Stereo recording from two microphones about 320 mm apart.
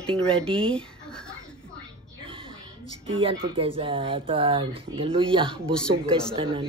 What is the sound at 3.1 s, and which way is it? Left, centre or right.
Speech, centre.